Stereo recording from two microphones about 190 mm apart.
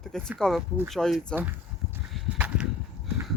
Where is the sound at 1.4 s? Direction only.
10° right (ahead or behind).